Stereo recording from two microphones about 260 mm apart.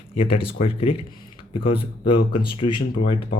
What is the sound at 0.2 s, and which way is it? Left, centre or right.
Speech, left.